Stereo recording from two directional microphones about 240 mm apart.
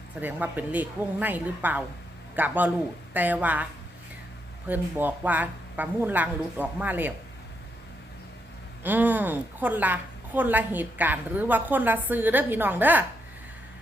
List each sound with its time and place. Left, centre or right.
0.2 s a woman's voice: centre
4.7 s a woman's voice: centre
8.8 s a woman's voice: centre